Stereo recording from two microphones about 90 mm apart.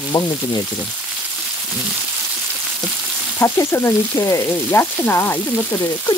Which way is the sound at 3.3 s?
25° left (ahead or behind).